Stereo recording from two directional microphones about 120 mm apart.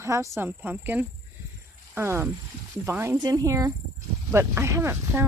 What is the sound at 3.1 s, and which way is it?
Speech, 30° right (ahead or behind).